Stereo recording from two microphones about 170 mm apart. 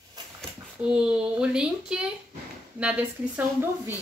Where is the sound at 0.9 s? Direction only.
5° right (ahead or behind).